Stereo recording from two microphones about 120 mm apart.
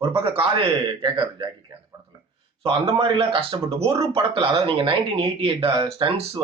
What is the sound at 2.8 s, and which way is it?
Speech, 50° right (ahead or behind).